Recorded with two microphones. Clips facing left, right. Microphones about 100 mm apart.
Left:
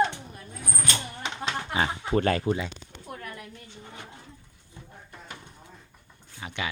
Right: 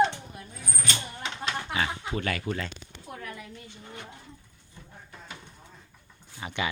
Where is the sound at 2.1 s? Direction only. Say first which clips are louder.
Left 7 dB; 35° left (ahead or behind).